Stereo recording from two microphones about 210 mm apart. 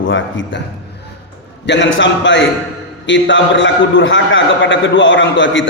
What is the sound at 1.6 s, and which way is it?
A man's voice, 60° left (ahead or behind).